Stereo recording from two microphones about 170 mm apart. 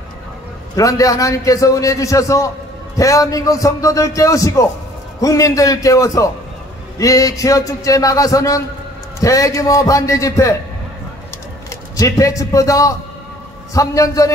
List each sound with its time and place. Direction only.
0.7 s a man's voice: 20° left (ahead or behind)
12.0 s a man's voice: 20° left (ahead or behind)